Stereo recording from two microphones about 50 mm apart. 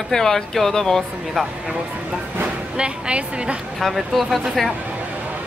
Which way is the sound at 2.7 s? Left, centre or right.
Right.